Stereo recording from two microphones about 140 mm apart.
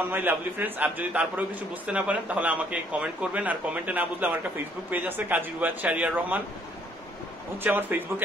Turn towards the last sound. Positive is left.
turn(degrees=-15)  # may be behind; listen again after turning